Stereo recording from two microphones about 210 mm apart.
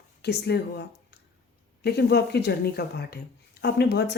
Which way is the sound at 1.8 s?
50° left (ahead or behind).